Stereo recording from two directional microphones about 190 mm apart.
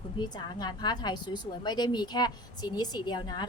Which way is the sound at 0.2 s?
20° left (ahead or behind).